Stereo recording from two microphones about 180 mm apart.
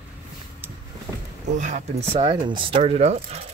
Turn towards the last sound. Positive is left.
turn(degrees=-35)  # may be behind; listen again after turning